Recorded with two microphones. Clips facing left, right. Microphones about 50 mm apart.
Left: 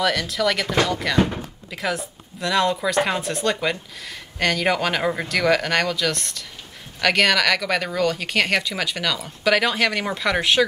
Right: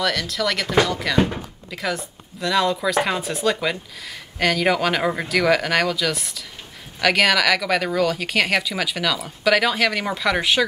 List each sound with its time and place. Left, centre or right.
0.0 s speech: centre